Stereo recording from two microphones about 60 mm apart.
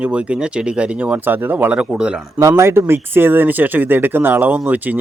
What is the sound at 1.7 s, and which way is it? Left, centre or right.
Speech, centre.